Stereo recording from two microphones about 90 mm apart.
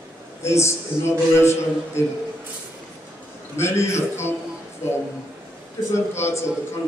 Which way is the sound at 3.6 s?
30° left (ahead or behind).